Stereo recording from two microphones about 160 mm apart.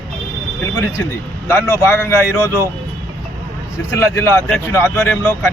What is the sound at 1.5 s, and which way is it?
Speech, 15° left (ahead or behind).